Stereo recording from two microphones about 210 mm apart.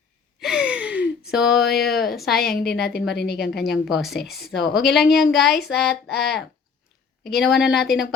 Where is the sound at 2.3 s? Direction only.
45° left (ahead or behind).